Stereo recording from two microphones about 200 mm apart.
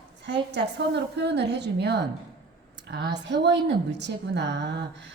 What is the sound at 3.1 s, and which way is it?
A woman's voice, 60° right (ahead or behind).